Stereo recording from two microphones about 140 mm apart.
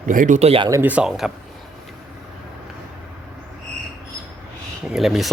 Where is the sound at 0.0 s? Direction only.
70° right (ahead or behind); by 0.6 s 50° right (ahead or behind).